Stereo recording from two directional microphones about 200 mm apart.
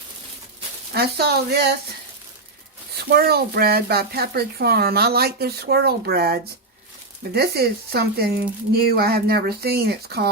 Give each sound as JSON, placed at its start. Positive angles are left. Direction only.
{"t": 0.9, "sound": "speech", "side_deg": -55}
{"t": 3.1, "sound": "speech", "side_deg": -50}